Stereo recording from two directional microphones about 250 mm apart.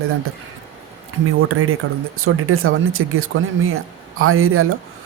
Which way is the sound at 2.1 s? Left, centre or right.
Right.